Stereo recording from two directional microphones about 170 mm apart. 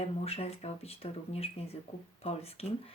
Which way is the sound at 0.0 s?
35° left (ahead or behind).